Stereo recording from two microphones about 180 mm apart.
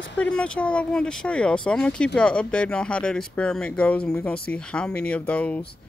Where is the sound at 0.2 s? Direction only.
5° left (ahead or behind).